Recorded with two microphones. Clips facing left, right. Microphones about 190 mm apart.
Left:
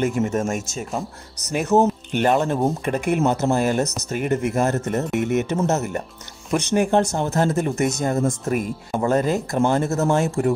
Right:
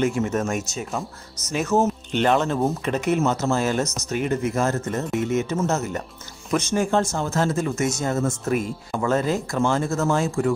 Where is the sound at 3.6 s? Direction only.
45° left (ahead or behind).